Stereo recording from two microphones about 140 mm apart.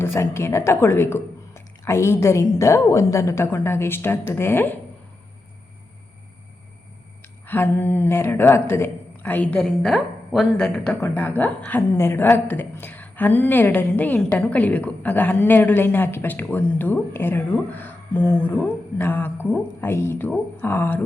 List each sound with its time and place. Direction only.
0.0 s a woman's voice: 20° left (ahead or behind)
7.4 s a woman's voice: 15° left (ahead or behind)